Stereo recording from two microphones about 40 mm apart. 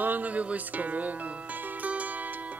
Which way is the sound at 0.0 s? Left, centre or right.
Right.